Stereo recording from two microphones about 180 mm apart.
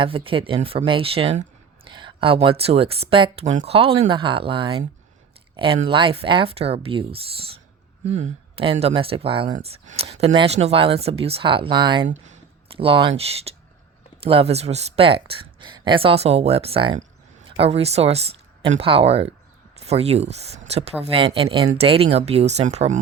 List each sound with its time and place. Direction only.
0.0 s speech: 30° right (ahead or behind)